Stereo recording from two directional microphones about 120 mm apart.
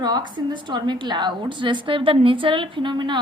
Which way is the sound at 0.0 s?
35° right (ahead or behind).